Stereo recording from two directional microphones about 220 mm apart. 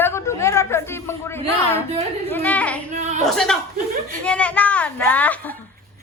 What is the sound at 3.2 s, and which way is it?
A man's voice, centre (ahead or behind).